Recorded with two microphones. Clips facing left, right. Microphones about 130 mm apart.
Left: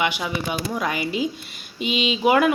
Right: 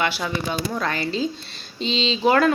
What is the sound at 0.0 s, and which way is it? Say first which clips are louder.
A woman's voice: even; 15° left (ahead or behind).